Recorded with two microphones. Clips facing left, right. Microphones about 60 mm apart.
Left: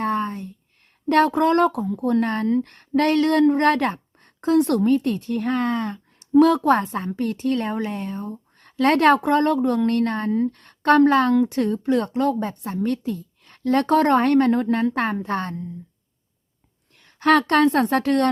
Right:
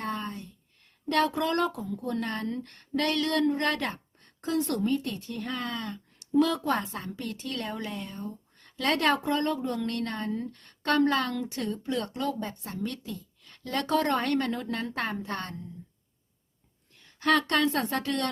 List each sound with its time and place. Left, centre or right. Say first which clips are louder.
0.0 s a sound: left 10 dB; left
1.0 s a woman's voice: left 9 dB; left
6.8 s a woman's voice: left 11 dB; left
17.2 s a woman's voice: left 8 dB; left